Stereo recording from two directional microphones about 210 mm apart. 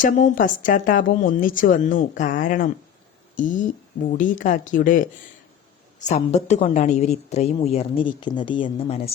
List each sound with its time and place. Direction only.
0.0 s a woman's voice: 40° left (ahead or behind)